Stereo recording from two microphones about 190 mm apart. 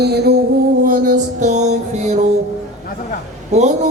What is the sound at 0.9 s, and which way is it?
Music, 45° right (ahead or behind).